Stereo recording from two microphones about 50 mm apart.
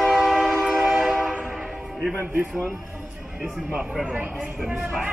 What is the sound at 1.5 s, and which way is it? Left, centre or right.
Train horn, centre.